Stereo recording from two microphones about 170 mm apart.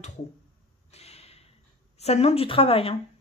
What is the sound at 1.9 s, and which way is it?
Speech, 35° left (ahead or behind).